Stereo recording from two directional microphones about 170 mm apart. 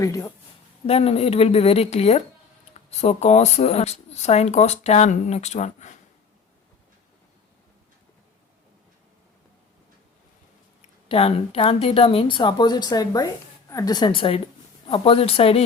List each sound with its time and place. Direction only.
0.0 s speech: 20° left (ahead or behind)
0.9 s speech: 35° left (ahead or behind)
11.1 s speech: 35° left (ahead or behind)